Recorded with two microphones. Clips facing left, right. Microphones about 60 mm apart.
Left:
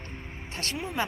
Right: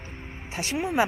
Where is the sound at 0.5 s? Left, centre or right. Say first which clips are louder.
Right 7 dB; centre.